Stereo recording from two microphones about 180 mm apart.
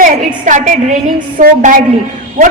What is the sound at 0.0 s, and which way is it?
A woman's voice, 45° right (ahead or behind).